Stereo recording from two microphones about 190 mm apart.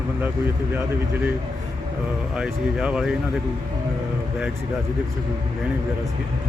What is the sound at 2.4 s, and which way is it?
Speech, 5° right (ahead or behind).